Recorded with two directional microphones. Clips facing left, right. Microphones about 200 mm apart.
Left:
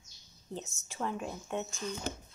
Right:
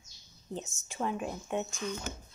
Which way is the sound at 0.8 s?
15° right (ahead or behind).